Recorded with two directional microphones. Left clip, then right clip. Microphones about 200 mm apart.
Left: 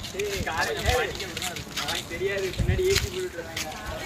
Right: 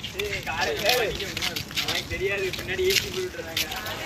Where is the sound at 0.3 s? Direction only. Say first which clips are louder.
Even; 30° left (ahead or behind).